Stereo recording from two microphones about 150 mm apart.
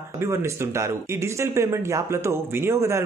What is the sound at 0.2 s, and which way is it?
Speech, 20° right (ahead or behind).